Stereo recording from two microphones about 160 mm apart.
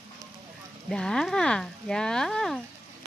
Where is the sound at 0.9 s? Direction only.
5° left (ahead or behind).